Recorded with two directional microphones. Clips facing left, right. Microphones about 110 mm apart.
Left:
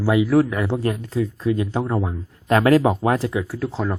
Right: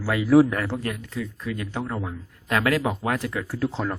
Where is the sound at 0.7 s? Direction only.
30° left (ahead or behind).